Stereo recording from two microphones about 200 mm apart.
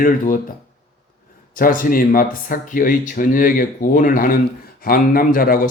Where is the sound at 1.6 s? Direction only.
45° left (ahead or behind).